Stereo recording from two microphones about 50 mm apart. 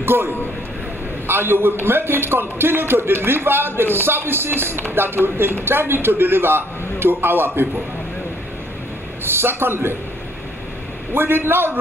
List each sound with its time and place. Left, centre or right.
0.0 s a man's voice: right
9.2 s a man's voice: right
11.1 s a man's voice: right